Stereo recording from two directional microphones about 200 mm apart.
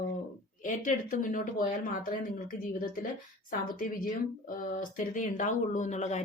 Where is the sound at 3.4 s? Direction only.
45° left (ahead or behind).